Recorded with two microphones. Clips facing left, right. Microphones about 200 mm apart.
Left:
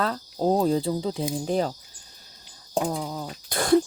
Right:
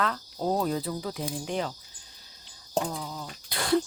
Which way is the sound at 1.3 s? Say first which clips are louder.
Left 7 dB; 35° left (ahead or behind).